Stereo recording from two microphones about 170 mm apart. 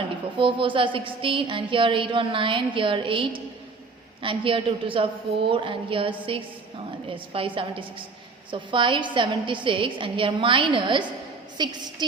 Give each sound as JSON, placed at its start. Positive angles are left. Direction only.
{"t": 0.3, "sound": "a woman's voice", "side_deg": -30}